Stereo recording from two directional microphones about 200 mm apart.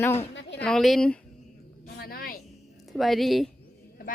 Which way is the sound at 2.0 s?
50° left (ahead or behind).